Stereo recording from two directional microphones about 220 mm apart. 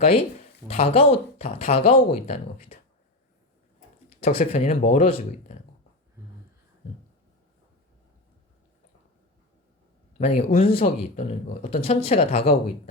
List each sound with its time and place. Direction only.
0.7 s speech: 25° left (ahead or behind)
4.2 s speech: 30° left (ahead or behind)
10.2 s a man's voice: 30° left (ahead or behind)